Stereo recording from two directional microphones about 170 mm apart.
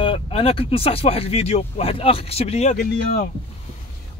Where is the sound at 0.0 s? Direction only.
30° left (ahead or behind).